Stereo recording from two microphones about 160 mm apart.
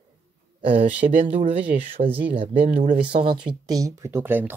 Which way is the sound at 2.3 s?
35° right (ahead or behind).